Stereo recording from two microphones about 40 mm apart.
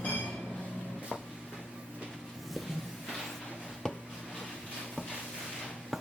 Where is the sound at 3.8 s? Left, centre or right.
Centre.